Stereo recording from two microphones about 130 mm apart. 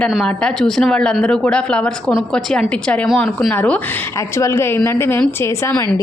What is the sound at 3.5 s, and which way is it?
A woman's voice, 15° left (ahead or behind).